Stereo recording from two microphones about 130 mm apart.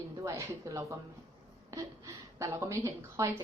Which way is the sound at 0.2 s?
25° right (ahead or behind).